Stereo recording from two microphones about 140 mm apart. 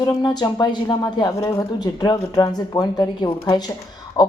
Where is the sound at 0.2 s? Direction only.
30° left (ahead or behind).